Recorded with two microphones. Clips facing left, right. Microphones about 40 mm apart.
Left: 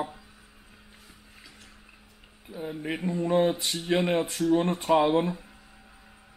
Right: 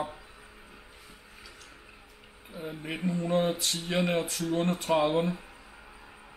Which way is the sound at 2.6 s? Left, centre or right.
Centre.